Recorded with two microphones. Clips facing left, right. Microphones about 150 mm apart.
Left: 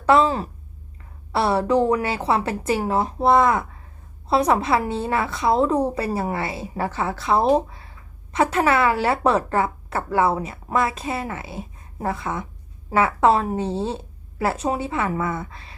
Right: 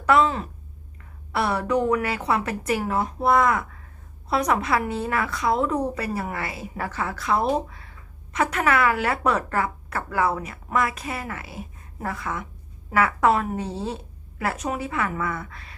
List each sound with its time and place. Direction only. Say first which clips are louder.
0.0 s a woman's voice: left 3 dB; 30° left (ahead or behind)